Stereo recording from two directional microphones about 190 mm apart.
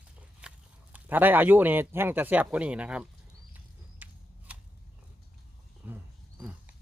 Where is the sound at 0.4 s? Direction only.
5° right (ahead or behind).